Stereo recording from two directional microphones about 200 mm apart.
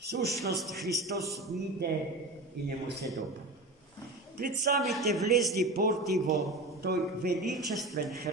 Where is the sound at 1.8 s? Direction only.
55° right (ahead or behind).